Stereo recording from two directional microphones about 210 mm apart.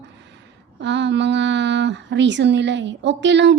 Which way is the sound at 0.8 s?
55° right (ahead or behind).